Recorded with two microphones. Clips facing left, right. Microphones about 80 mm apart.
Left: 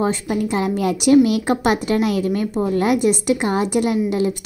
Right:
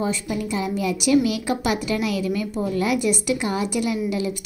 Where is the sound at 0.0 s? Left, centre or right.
Left.